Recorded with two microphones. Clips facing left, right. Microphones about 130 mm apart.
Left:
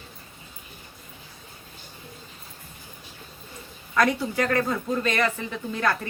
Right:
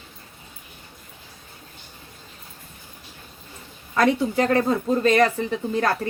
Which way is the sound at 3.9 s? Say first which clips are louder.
Right 3 dB; 25° right (ahead or behind).